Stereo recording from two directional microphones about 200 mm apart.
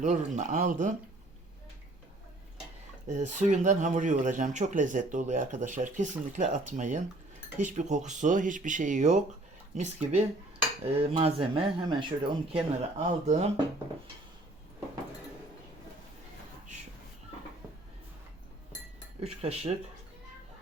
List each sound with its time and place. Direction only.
0.0 s speech: 35° right (ahead or behind)
3.1 s speech: 35° right (ahead or behind)
19.2 s speech: 30° right (ahead or behind)